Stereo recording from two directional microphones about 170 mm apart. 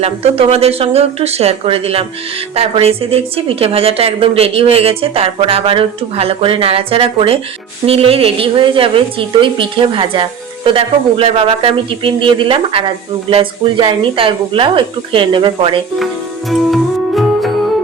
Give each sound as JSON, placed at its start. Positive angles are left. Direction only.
{"t": 0.0, "sound": "a woman's voice", "side_deg": -35}
{"t": 16.5, "sound": "music", "side_deg": 0}